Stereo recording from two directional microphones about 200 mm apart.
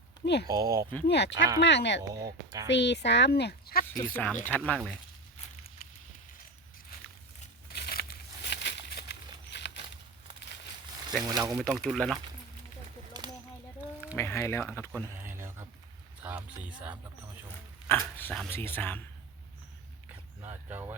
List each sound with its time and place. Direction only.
0.4 s speech: 20° right (ahead or behind)
1.0 s speech: 55° left (ahead or behind)
2.0 s speech: 15° right (ahead or behind)
2.6 s speech: 60° left (ahead or behind)
4.1 s speech: 10° left (ahead or behind)
7.7 s a sound: 50° left (ahead or behind)
11.3 s speech: 20° right (ahead or behind)
11.5 s speech: 5° left (ahead or behind)
14.2 s speech: 10° left (ahead or behind)
15.2 s a sound: 10° right (ahead or behind)
16.2 s speech: 10° right (ahead or behind)
17.8 s speech: 10° left (ahead or behind)
20.4 s speech: 10° right (ahead or behind)